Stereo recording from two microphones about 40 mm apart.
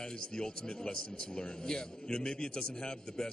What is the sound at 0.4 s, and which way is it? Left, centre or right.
A man's voice, left.